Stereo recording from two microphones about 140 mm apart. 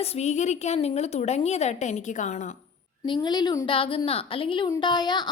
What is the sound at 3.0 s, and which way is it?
A woman's voice, 30° left (ahead or behind).